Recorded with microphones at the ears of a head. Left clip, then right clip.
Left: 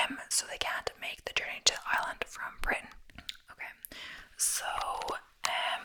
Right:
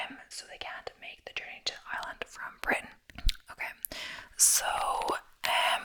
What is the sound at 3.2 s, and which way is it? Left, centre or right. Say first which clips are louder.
Whispering: right 6 dB; right.